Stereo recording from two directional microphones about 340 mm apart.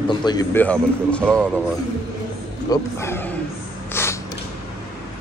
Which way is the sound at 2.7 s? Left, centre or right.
Centre.